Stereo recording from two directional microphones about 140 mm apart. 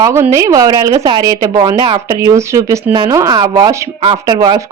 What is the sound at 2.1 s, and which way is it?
A woman's voice, 20° right (ahead or behind).